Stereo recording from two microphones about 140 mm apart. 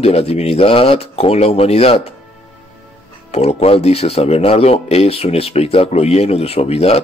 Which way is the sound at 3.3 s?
50° left (ahead or behind).